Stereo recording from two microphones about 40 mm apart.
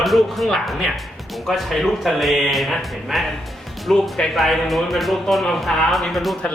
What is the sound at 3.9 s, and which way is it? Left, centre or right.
Speech, centre.